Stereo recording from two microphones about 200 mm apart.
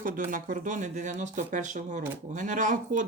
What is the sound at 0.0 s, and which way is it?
Speech, 45° right (ahead or behind).